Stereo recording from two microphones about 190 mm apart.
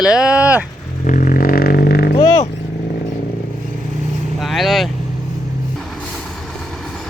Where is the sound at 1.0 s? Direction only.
45° left (ahead or behind).